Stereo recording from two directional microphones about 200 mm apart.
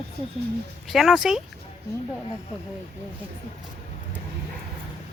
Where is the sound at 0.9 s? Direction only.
Centre (ahead or behind).